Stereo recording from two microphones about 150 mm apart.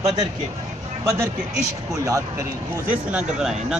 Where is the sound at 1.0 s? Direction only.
20° right (ahead or behind).